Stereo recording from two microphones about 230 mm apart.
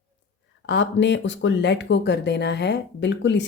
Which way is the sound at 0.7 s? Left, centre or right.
Left.